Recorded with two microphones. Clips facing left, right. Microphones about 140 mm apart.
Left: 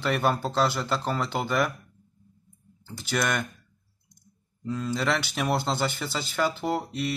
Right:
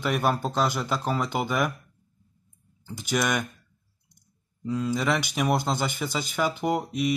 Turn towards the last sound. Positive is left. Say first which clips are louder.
# right 3 dB
turn(degrees=-15)  # may be behind; listen again after turning